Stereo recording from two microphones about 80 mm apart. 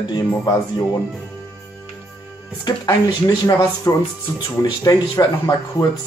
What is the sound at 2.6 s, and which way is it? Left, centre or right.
Speech, left.